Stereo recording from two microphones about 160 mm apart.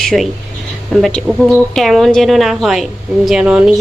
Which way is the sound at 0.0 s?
Centre (ahead or behind).